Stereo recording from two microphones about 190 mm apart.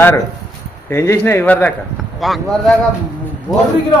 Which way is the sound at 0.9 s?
15° left (ahead or behind).